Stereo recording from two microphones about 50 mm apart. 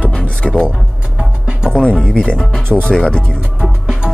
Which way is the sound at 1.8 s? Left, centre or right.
Centre.